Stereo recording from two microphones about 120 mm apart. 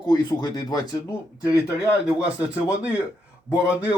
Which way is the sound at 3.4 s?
25° left (ahead or behind).